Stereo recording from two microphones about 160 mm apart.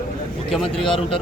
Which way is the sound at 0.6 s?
35° left (ahead or behind).